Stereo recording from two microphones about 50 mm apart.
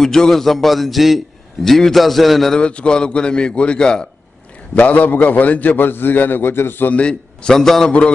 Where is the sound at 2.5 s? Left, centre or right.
Left.